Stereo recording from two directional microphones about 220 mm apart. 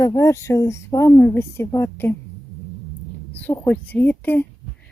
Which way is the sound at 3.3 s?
10° left (ahead or behind).